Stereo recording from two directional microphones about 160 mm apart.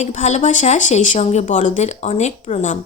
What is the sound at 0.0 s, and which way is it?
Speech, 45° left (ahead or behind).